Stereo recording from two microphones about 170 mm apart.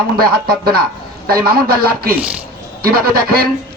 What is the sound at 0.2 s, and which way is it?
Speech, 65° right (ahead or behind).